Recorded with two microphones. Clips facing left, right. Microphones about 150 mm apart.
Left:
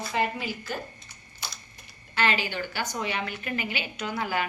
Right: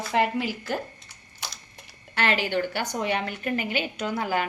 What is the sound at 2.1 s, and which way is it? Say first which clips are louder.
Speech: right 3 dB; 65° right (ahead or behind).